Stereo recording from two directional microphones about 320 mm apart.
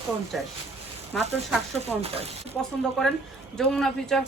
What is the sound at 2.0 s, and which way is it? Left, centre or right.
Speech, centre.